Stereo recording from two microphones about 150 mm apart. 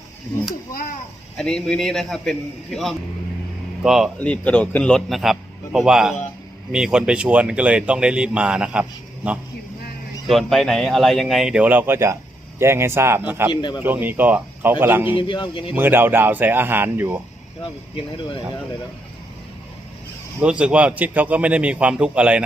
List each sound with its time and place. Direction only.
0.7 s a child's voice: 70° left (ahead or behind)
1.4 s a man's voice: 5° left (ahead or behind)
3.8 s a man's voice: centre (ahead or behind)
4.2 s a man's voice: 10° left (ahead or behind); by 13.5 s 15° right (ahead or behind)
13.5 s a man's voice: 30° left (ahead or behind)
13.8 s speech: 15° right (ahead or behind)
15.1 s a man's voice: 30° left (ahead or behind)
15.7 s speech: 15° right (ahead or behind)
20.4 s speech: 5° right (ahead or behind)